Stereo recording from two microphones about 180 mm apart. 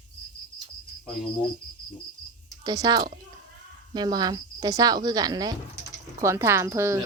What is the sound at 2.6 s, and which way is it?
Speech, 20° right (ahead or behind).